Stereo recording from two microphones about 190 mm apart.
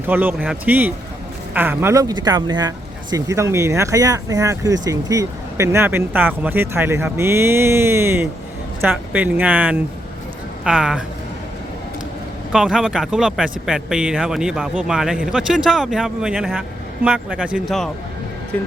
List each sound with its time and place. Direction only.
0.1 s speech: 10° right (ahead or behind)
12.5 s speech: centre (ahead or behind)